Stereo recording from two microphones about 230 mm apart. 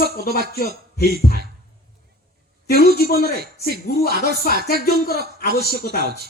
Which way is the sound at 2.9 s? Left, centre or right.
Left.